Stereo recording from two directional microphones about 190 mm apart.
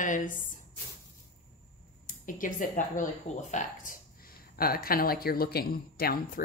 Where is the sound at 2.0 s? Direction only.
45° left (ahead or behind).